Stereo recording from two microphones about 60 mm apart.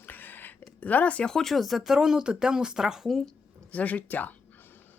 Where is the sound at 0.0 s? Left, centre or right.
Left.